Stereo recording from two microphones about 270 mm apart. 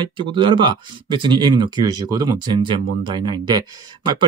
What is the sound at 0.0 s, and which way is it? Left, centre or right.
Speech, centre.